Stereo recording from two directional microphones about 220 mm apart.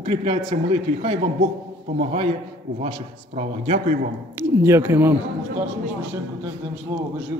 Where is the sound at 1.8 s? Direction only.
30° right (ahead or behind).